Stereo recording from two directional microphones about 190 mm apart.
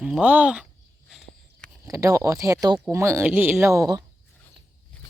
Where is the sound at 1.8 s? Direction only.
15° right (ahead or behind).